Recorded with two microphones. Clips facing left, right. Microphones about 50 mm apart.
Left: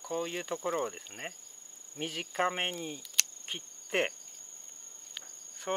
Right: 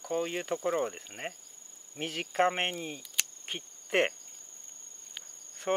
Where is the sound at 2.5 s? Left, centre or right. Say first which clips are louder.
Right 2 dB; centre.